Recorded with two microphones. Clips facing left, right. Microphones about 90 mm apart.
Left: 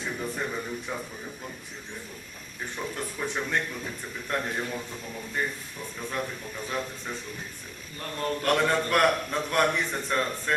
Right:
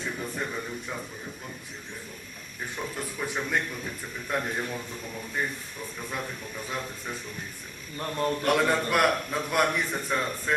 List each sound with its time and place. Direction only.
0.0 s speech: centre (ahead or behind)
2.7 s a man's voice: 5° right (ahead or behind)
6.7 s a man's voice: 5° right (ahead or behind)
7.9 s a man's voice: 25° right (ahead or behind)
8.4 s a man's voice: 5° right (ahead or behind)